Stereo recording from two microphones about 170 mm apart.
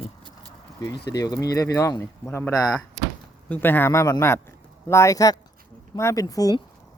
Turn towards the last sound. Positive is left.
turn(degrees=20)  # may be behind; listen again after turning